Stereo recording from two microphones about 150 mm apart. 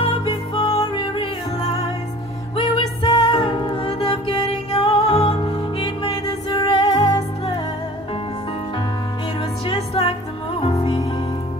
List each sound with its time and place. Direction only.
0.0 s music: 35° left (ahead or behind)
9.7 s music: 40° left (ahead or behind)